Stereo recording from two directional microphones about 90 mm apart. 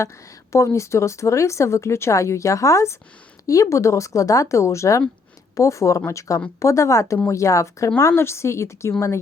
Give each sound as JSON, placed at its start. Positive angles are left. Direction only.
{"t": 0.5, "sound": "speech", "side_deg": 35}